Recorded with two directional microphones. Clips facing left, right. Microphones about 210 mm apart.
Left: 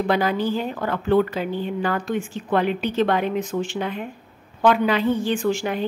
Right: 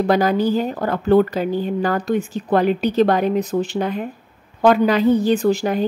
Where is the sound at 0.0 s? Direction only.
40° right (ahead or behind).